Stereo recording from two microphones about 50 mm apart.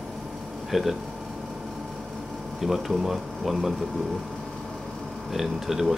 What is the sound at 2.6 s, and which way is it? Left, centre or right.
Speech, centre.